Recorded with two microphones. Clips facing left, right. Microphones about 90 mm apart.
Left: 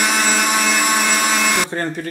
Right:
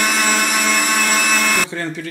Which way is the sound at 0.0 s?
15° left (ahead or behind).